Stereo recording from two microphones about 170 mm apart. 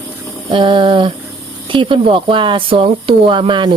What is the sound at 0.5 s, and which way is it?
Speech, 30° right (ahead or behind).